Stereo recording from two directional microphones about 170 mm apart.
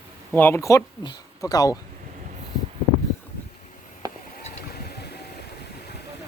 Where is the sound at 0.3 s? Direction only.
15° left (ahead or behind).